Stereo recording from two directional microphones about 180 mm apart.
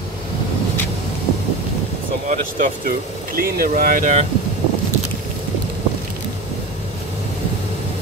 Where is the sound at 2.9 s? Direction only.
55° right (ahead or behind).